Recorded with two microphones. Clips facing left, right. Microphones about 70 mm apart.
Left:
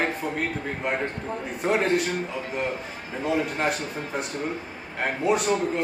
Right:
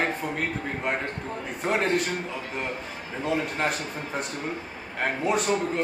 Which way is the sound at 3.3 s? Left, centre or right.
Centre.